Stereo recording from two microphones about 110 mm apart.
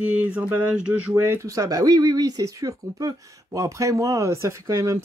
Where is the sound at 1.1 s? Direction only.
25° right (ahead or behind).